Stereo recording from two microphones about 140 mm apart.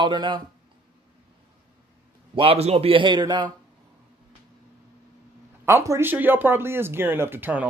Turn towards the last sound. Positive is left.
turn(degrees=-15)  # may be behind; listen again after turning